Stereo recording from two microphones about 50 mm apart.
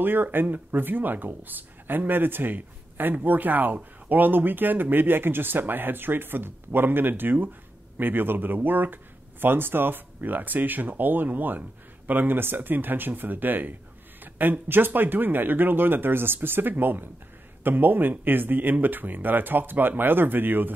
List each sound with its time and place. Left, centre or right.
0.0 s speech: right